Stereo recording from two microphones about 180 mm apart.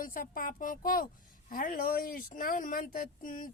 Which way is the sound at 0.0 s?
50° left (ahead or behind).